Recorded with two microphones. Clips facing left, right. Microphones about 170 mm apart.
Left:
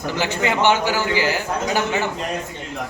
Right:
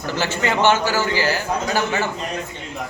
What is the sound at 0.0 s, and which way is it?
A man's voice, 15° left (ahead or behind).